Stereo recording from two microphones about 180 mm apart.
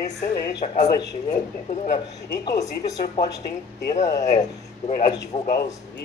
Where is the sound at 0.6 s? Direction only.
40° left (ahead or behind).